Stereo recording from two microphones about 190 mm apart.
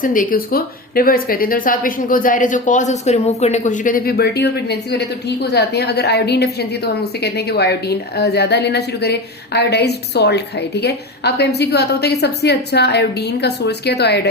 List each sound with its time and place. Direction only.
0.0 s a woman's voice: 45° left (ahead or behind)